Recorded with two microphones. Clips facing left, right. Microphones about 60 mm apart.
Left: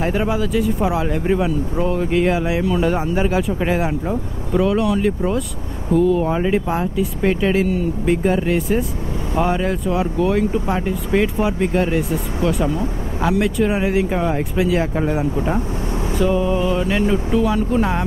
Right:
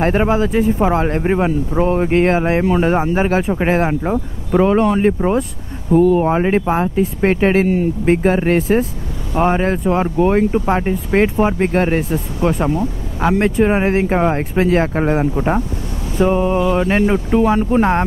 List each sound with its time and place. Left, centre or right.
0.0 s speech: right